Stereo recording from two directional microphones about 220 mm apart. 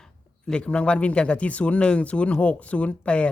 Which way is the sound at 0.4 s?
5° left (ahead or behind).